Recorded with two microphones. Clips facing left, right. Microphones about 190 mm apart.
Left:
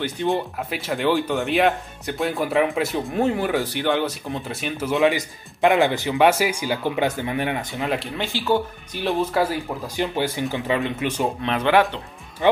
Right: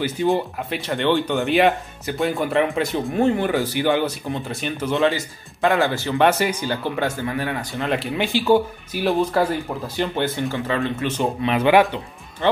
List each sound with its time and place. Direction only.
0.0 s speech: centre (ahead or behind)
5.0 s speech: 15° left (ahead or behind)
7.8 s speech: centre (ahead or behind)
8.2 s speech: 15° right (ahead or behind)
9.0 s speech: centre (ahead or behind)
11.4 s speech: 10° right (ahead or behind)